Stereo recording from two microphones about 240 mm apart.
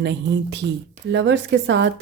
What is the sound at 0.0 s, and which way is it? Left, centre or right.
Speech, right.